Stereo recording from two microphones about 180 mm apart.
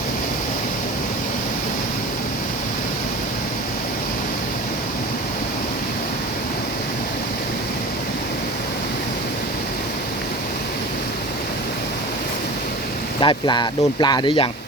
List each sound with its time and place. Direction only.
13.1 s speech: 25° left (ahead or behind)